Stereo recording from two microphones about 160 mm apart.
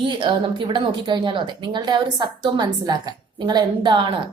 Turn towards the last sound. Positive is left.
turn(degrees=-30)  # may be behind; listen again after turning